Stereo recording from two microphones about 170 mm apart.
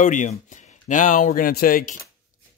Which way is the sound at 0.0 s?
50° left (ahead or behind).